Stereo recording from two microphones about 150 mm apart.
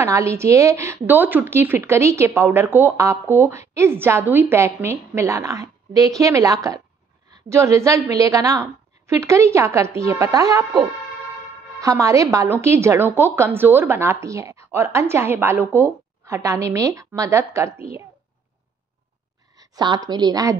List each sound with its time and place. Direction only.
0.0 s a woman's voice: 20° right (ahead or behind)
11.8 s a woman's voice: 20° right (ahead or behind)
19.6 s a woman's voice: 25° right (ahead or behind)